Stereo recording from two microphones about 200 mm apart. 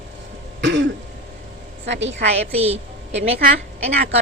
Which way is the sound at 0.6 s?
65° right (ahead or behind).